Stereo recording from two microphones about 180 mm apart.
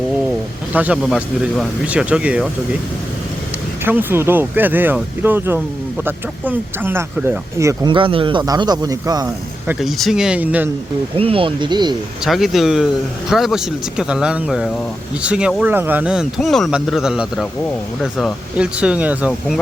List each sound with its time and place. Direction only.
0.7 s speech: 10° right (ahead or behind)
3.8 s speech: 10° right (ahead or behind)
7.9 s a man's voice: 30° right (ahead or behind)
9.8 s speech: centre (ahead or behind)
11.2 s a man's voice: 30° right (ahead or behind)
12.2 s speech: centre (ahead or behind)